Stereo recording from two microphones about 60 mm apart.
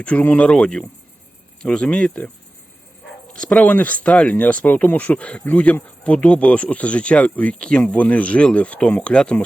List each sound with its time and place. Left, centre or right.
0.0 s speech: left
0.3 s speech: centre
3.3 s speech: centre
3.7 s speech: left